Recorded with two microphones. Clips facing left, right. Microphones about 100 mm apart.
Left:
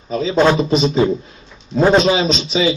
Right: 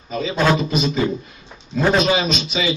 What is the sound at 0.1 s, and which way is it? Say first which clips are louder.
A man's voice: left 4 dB; 30° left (ahead or behind).